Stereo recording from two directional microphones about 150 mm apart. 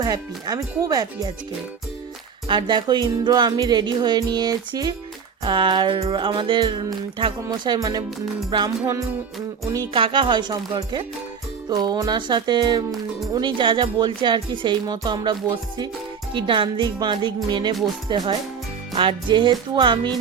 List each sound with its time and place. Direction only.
0.0 s speech: 25° right (ahead or behind)
2.5 s speech: 30° right (ahead or behind)
9.9 s speech: 35° right (ahead or behind)
12.9 s speech: centre (ahead or behind)
13.3 s speech: 30° right (ahead or behind)